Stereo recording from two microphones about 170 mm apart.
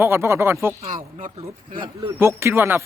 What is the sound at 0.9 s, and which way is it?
Speech, 50° right (ahead or behind).